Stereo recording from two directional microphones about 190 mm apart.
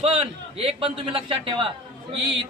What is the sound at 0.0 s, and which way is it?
A man's voice, 30° right (ahead or behind).